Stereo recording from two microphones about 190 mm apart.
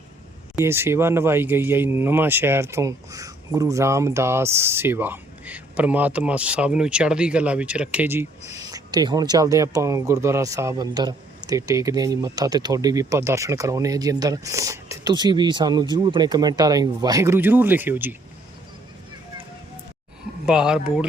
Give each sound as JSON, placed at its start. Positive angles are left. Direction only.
{"t": 0.6, "sound": "speech", "side_deg": -15}
{"t": 20.4, "sound": "speech", "side_deg": -5}